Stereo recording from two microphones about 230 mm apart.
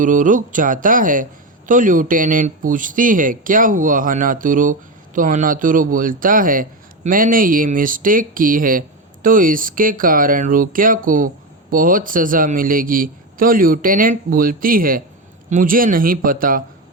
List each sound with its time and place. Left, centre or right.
0.0 s speech: right